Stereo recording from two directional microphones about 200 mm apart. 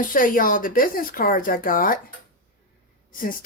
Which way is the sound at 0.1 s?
45° left (ahead or behind).